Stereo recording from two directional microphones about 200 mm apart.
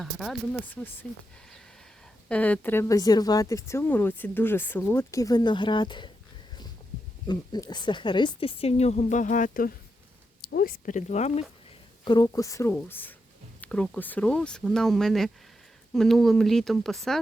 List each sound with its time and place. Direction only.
0.0 s speech: centre (ahead or behind)
2.3 s speech: 5° left (ahead or behind); by 6.1 s 25° left (ahead or behind)
7.3 s a woman's voice: 20° left (ahead or behind)
12.0 s speech: 20° left (ahead or behind); by 17.2 s centre (ahead or behind)